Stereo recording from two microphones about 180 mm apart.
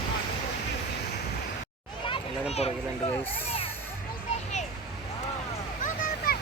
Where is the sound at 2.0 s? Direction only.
30° left (ahead or behind).